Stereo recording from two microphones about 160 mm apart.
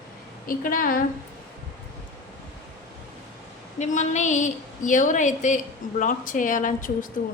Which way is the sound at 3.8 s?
50° left (ahead or behind).